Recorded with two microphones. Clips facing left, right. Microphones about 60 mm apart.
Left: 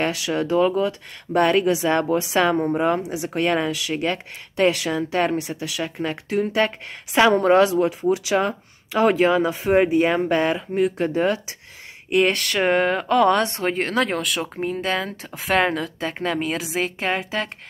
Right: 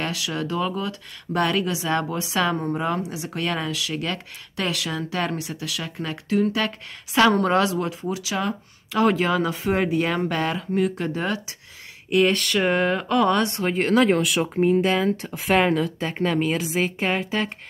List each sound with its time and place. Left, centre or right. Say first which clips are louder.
0.0 s speech: left 5 dB; left
8.1 s speech: left 6 dB; left
13.7 s speech: right 3 dB; centre